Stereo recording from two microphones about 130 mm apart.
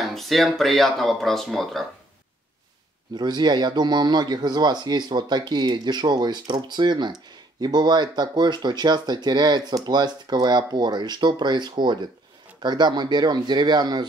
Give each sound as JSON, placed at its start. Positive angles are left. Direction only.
{"t": 0.0, "sound": "speech", "side_deg": 0}
{"t": 3.2, "sound": "speech", "side_deg": -35}